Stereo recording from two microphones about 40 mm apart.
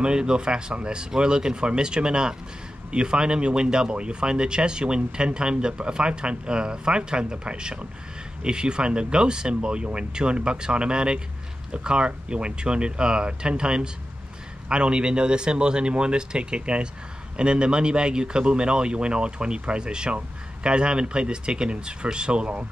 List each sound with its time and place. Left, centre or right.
0.0 s speech: right